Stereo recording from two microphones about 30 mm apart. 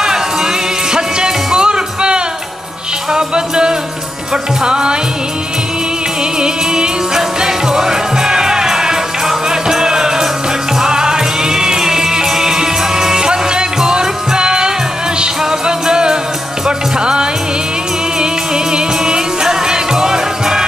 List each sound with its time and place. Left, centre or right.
0.0 s music: centre
6.4 s music: right